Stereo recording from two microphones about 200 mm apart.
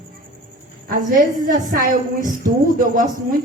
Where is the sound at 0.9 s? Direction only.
45° right (ahead or behind).